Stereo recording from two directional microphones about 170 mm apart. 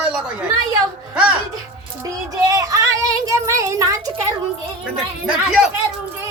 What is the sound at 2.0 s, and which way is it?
Child singing, 20° right (ahead or behind).